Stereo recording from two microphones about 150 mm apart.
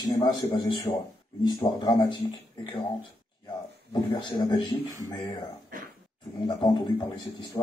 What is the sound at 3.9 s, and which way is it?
Speech, 30° left (ahead or behind).